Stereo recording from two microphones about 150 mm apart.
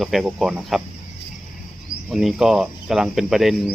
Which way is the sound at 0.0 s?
Centre (ahead or behind).